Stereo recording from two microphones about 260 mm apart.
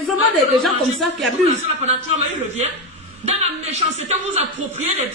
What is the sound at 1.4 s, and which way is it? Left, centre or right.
A man's voice, right.